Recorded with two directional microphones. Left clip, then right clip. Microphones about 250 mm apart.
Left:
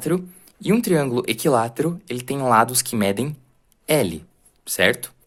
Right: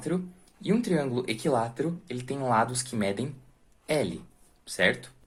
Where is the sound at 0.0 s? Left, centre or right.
Left.